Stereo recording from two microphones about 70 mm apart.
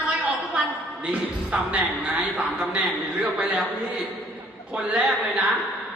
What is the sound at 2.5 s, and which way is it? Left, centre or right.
Speech, centre.